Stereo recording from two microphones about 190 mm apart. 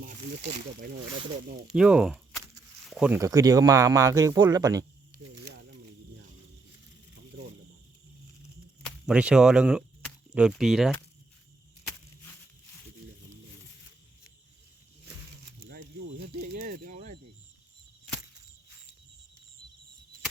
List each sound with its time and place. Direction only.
0.0 s speech: 40° right (ahead or behind)
1.7 s speech: 5° right (ahead or behind)
8.8 s speech: 5° right (ahead or behind)
16.6 s pulleys: 50° right (ahead or behind)